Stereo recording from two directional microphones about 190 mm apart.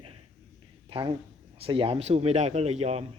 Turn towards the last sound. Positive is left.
turn(degrees=-35)  # may be behind; listen again after turning